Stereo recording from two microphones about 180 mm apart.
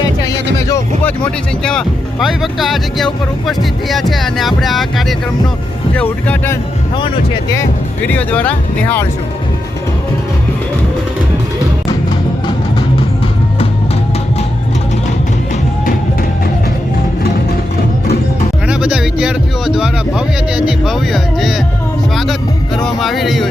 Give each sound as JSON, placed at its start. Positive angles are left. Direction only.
{"t": 0.2, "sound": "music", "side_deg": 20}
{"t": 1.2, "sound": "speech", "side_deg": 5}
{"t": 8.0, "sound": "speech", "side_deg": 10}
{"t": 18.7, "sound": "a sound", "side_deg": -5}
{"t": 22.1, "sound": "speech", "side_deg": 0}